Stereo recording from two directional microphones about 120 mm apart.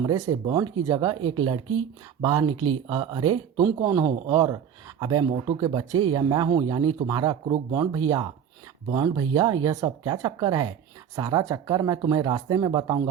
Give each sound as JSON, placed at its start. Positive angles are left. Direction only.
{"t": 0.0, "sound": "speech", "side_deg": -30}